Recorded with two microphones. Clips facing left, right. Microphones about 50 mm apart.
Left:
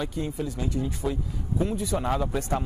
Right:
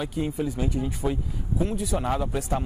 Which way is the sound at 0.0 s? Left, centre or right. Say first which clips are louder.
Right 2 dB; centre.